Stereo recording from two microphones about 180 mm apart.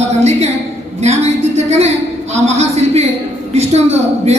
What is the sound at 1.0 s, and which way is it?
A woman's voice, 40° right (ahead or behind).